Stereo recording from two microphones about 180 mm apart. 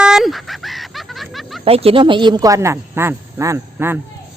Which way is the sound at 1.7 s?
30° right (ahead or behind).